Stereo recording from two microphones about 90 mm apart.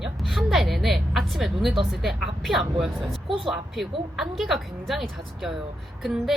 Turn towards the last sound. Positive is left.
turn(degrees=-5)  # may be behind; listen again after turning